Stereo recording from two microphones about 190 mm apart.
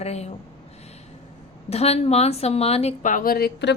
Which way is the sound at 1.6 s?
35° left (ahead or behind).